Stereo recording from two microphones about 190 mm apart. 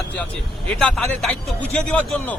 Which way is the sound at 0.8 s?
5° left (ahead or behind).